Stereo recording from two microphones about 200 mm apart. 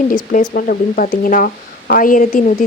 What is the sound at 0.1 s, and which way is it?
Speech, 45° left (ahead or behind).